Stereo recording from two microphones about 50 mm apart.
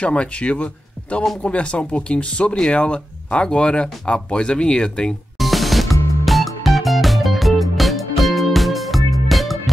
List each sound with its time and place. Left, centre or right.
0.0 s speech: left
5.4 s music: centre